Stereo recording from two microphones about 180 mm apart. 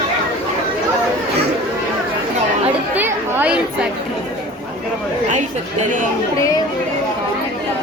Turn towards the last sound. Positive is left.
turn(degrees=-40)  # may be behind; listen again after turning